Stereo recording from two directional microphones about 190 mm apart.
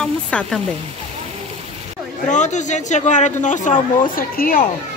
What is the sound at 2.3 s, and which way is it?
A man's voice, 40° left (ahead or behind).